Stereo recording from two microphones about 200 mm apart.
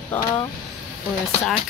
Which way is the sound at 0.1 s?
20° left (ahead or behind).